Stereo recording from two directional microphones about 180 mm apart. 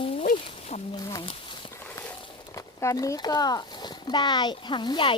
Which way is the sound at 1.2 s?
25° left (ahead or behind).